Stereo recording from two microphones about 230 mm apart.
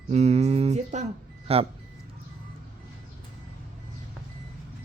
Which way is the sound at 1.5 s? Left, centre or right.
Right.